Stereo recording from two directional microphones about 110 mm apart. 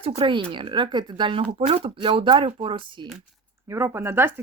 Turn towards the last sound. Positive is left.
turn(degrees=-20)  # may be behind; listen again after turning